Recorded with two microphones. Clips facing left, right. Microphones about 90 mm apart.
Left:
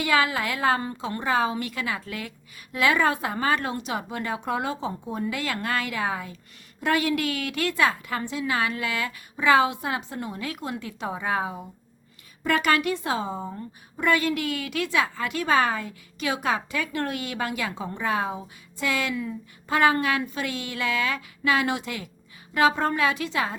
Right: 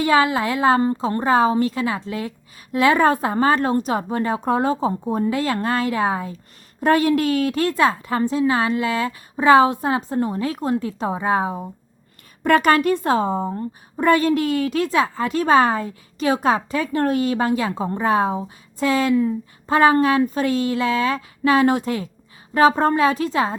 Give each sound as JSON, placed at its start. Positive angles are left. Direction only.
{"t": 0.0, "sound": "a woman's voice", "side_deg": -30}
{"t": 12.4, "sound": "speech", "side_deg": -45}
{"t": 13.5, "sound": "a woman's voice", "side_deg": -35}